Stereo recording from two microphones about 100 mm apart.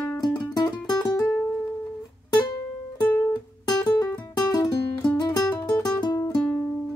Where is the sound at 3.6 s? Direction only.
40° left (ahead or behind).